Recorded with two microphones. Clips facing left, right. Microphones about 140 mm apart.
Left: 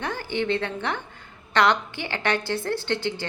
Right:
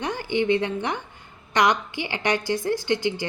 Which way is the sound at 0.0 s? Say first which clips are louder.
Right 3 dB; 15° right (ahead or behind).